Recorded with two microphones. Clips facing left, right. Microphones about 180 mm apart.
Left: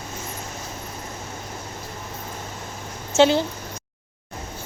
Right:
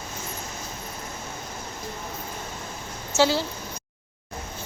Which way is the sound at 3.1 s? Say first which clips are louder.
Left 5 dB; 20° left (ahead or behind).